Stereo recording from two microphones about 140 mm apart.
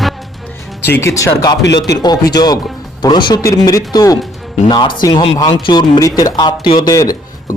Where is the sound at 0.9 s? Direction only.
20° left (ahead or behind).